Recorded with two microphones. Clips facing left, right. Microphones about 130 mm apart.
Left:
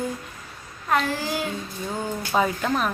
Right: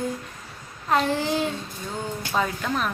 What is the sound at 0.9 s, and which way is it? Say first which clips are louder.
Speech: right 2 dB; 25° right (ahead or behind).